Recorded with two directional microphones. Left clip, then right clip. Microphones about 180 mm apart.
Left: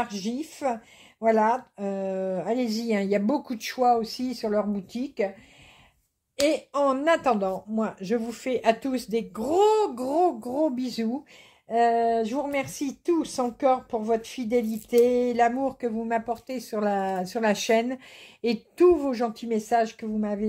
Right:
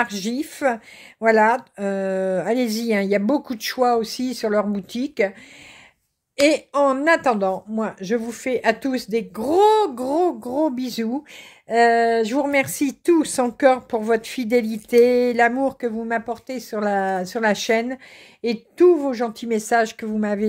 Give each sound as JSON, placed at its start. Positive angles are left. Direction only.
{"t": 0.0, "sound": "speech", "side_deg": -45}
{"t": 6.4, "sound": "a woman's voice", "side_deg": -30}
{"t": 11.7, "sound": "speech", "side_deg": -40}
{"t": 19.5, "sound": "speech", "side_deg": -35}